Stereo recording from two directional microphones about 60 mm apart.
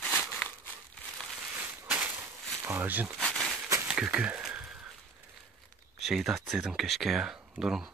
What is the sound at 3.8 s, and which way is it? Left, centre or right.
Speech, centre.